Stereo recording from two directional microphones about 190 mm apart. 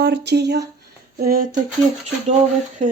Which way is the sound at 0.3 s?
60° right (ahead or behind).